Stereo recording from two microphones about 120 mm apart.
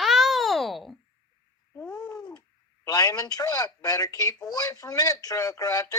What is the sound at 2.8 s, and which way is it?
Speech, 30° left (ahead or behind).